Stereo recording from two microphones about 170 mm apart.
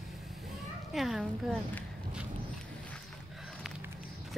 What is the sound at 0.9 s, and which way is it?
Speech, centre (ahead or behind).